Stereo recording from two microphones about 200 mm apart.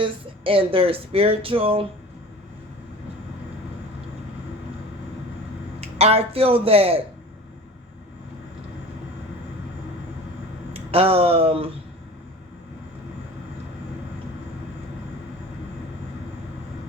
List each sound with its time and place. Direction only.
0.0 s speech: 25° right (ahead or behind)
5.8 s speech: 30° right (ahead or behind)
10.8 s speech: 30° right (ahead or behind)